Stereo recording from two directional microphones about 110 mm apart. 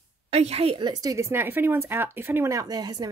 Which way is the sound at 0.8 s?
35° right (ahead or behind).